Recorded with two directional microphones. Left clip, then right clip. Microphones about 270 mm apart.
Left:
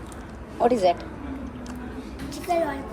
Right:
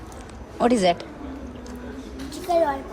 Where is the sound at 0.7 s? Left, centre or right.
Right.